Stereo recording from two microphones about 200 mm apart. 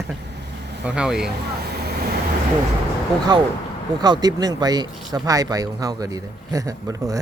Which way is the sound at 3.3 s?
20° right (ahead or behind).